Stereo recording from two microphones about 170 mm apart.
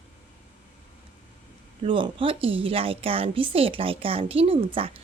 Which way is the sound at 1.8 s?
30° right (ahead or behind).